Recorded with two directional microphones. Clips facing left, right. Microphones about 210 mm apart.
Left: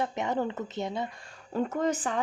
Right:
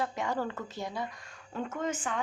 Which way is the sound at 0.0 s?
20° left (ahead or behind).